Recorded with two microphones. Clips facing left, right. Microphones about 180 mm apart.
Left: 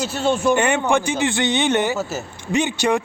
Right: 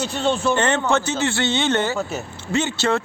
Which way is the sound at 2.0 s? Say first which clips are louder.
Even; centre (ahead or behind).